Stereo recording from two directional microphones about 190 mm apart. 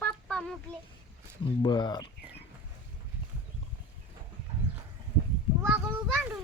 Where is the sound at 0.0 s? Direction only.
5° left (ahead or behind).